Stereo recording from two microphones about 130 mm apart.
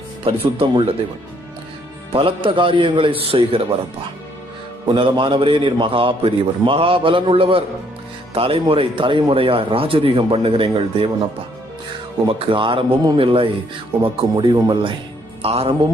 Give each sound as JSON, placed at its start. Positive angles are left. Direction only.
{"t": 0.3, "sound": "speech", "side_deg": -45}
{"t": 2.1, "sound": "a man's voice", "side_deg": -40}
{"t": 4.9, "sound": "speech", "side_deg": -40}
{"t": 12.3, "sound": "a man's voice", "side_deg": -45}